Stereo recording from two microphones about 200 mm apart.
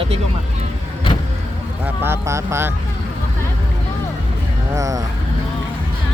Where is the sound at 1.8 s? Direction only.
10° right (ahead or behind).